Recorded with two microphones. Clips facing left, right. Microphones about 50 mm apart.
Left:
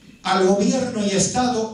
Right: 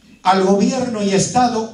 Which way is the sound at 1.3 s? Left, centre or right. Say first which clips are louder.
Right 5 dB; right.